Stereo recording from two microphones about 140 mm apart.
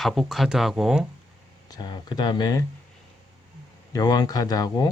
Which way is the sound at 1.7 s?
30° left (ahead or behind).